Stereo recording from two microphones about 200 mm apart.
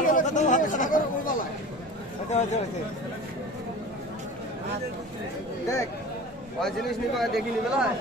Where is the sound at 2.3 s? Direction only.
35° left (ahead or behind).